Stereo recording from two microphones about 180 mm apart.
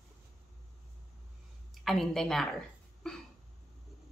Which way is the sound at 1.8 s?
Centre (ahead or behind).